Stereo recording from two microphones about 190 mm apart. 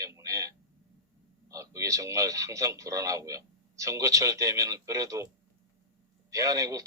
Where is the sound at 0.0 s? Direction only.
15° right (ahead or behind).